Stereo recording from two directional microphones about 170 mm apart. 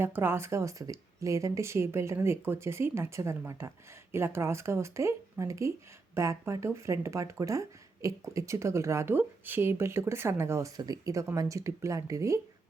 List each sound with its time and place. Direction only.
0.0 s speech: 15° right (ahead or behind)